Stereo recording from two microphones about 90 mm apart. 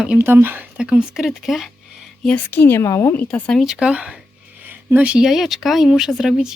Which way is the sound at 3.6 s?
5° right (ahead or behind).